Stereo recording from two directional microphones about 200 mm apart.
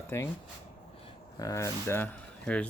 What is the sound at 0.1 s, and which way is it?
Speech, 10° left (ahead or behind).